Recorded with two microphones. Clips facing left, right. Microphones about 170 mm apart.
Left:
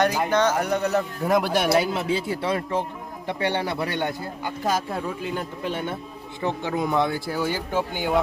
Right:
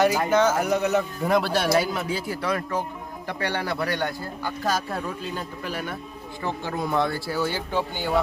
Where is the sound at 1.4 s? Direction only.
15° left (ahead or behind).